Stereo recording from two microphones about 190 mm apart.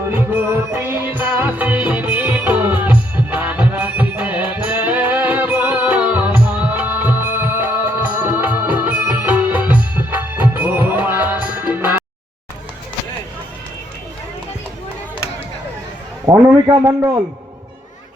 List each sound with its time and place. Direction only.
0.1 s music: 10° right (ahead or behind)
16.2 s a man's voice: 15° right (ahead or behind)